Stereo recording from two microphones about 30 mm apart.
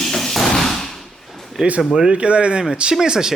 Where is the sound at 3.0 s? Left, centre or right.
Right.